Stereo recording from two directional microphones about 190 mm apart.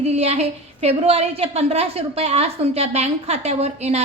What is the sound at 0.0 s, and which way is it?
A woman's voice, 35° right (ahead or behind).